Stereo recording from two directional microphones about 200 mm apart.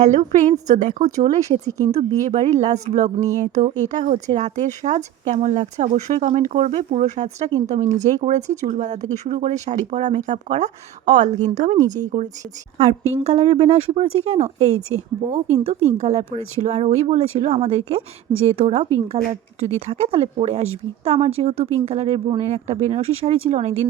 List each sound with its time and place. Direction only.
0.3 s speech: 40° right (ahead or behind)
14.8 s speech: 90° right
15.6 s speech: 35° right (ahead or behind)